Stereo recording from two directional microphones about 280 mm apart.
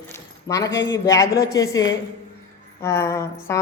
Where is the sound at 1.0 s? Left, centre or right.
Centre.